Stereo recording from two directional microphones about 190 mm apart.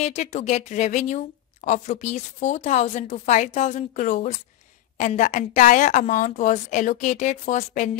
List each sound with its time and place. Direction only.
0.0 s speech: 35° left (ahead or behind)